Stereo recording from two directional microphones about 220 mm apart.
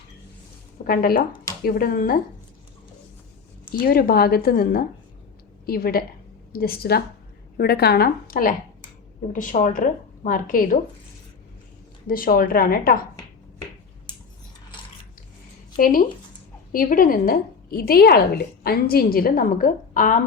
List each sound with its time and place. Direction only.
0.9 s a woman's voice: 40° left (ahead or behind)
3.7 s a woman's voice: 40° left (ahead or behind)
12.0 s a woman's voice: 40° left (ahead or behind)
15.8 s a woman's voice: 40° left (ahead or behind)